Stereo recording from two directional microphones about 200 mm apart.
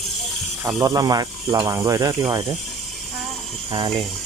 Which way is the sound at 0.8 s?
20° right (ahead or behind).